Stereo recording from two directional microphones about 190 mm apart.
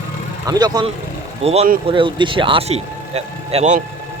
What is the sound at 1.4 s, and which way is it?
Speech, 30° right (ahead or behind).